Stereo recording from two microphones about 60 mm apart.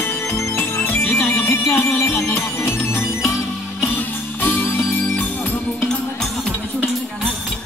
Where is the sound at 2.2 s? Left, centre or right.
Left.